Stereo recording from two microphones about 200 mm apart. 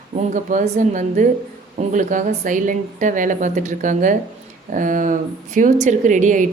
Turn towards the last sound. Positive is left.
turn(degrees=-40)  # may be behind; listen again after turning